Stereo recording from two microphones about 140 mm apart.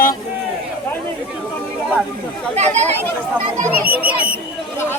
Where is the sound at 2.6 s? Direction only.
50° right (ahead or behind).